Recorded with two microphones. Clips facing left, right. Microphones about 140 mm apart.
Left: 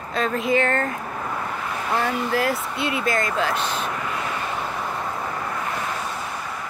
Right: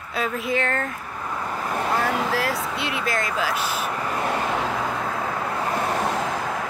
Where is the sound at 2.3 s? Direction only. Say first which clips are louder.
Left 2 dB; centre (ahead or behind).